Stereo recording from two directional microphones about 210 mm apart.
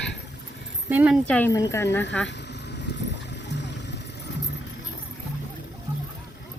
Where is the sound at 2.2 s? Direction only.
55° left (ahead or behind).